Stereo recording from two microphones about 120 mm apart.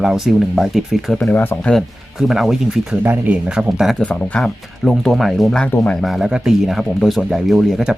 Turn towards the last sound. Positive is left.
turn(degrees=0)  # may be behind; listen again after turning